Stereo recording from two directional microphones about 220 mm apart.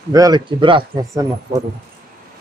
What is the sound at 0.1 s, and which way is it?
Speech, 15° right (ahead or behind).